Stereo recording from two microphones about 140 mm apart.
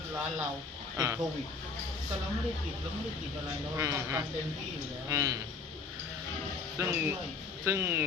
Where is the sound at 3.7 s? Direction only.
20° right (ahead or behind).